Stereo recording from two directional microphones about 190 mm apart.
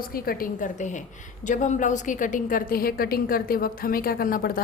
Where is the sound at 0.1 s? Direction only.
50° left (ahead or behind).